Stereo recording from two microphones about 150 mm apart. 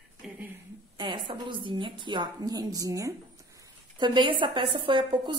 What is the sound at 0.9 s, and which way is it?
A woman's voice, 30° right (ahead or behind).